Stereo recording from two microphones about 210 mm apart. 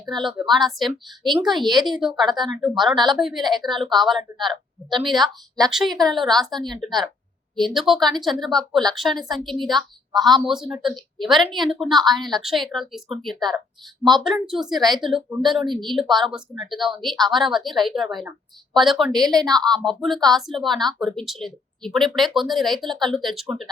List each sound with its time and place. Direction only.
0.0 s speech: centre (ahead or behind)
1.6 s a woman's voice: 20° right (ahead or behind)
2.0 s speech: centre (ahead or behind)
14.8 s a woman's voice: 20° right (ahead or behind)
15.0 s speech: centre (ahead or behind)